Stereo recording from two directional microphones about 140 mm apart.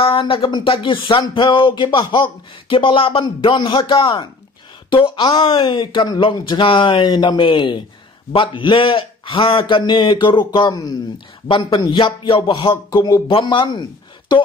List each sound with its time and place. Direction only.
0.0 s speech: 40° left (ahead or behind)